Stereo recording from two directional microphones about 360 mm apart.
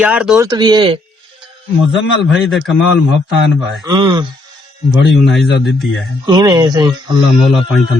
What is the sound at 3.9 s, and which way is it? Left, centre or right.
Speech, centre.